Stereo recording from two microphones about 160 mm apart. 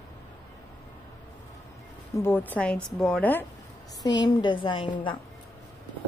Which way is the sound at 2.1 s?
15° left (ahead or behind).